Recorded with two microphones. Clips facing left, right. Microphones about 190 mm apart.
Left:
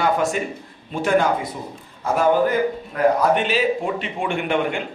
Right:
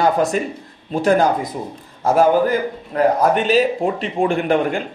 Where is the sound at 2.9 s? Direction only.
35° right (ahead or behind).